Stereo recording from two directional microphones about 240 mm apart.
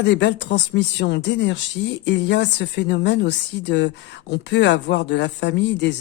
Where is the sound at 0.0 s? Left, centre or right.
Left.